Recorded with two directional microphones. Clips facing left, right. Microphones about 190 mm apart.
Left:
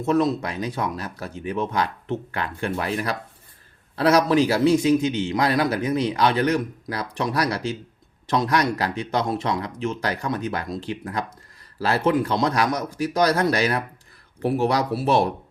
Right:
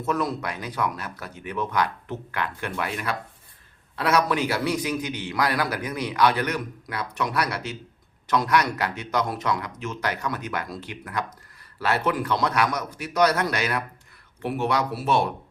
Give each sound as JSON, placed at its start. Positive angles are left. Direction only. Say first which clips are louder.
{"t": 0.0, "sound": "a man's voice", "louder": "left 5 dB", "side_deg": 25}